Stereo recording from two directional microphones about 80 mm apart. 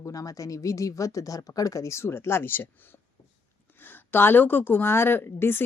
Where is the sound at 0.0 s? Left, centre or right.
Left.